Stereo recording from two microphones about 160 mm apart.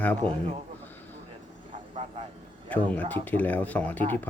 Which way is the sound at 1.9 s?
45° right (ahead or behind).